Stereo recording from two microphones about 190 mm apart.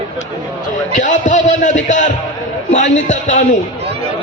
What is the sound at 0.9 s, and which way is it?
A man's voice, 40° left (ahead or behind).